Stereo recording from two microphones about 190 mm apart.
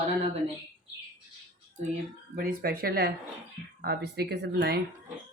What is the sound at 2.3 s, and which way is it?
Speech, 50° right (ahead or behind).